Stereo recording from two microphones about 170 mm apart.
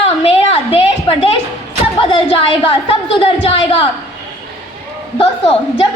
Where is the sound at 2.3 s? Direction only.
30° left (ahead or behind).